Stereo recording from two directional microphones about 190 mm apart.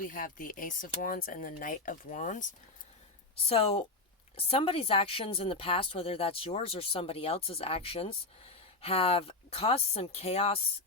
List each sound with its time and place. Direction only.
0.0 s speech: 45° left (ahead or behind)
3.5 s speech: 30° left (ahead or behind)